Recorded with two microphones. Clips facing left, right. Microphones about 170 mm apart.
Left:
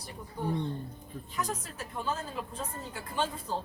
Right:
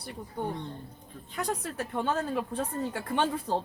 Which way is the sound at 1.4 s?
65° right (ahead or behind).